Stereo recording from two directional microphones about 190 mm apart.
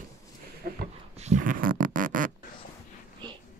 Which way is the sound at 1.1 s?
40° right (ahead or behind).